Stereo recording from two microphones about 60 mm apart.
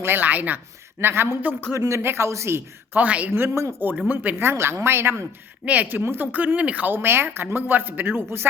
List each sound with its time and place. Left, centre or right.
0.0 s speech: right
1.0 s a man's voice: right
1.9 s speech: right
2.9 s speech: right
3.3 s speech: right
4.0 s speech: right
4.4 s speech: right
5.6 s speech: right
6.0 s a man's voice: right
6.3 s speech: right
6.9 s a man's voice: right